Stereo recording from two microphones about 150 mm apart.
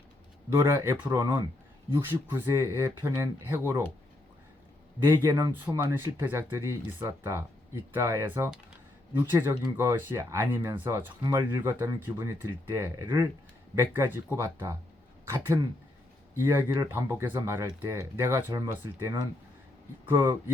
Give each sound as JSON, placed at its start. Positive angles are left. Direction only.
{"t": 0.5, "sound": "speech", "side_deg": -15}
{"t": 5.0, "sound": "speech", "side_deg": -15}
{"t": 16.3, "sound": "speech", "side_deg": -15}